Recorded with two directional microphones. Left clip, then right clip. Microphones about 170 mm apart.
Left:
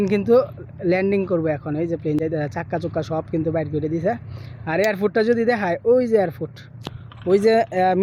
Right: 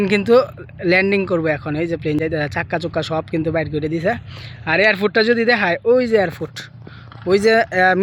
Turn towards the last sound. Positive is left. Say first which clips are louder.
# right 3 dB
turn(degrees=5)  # may be behind; listen again after turning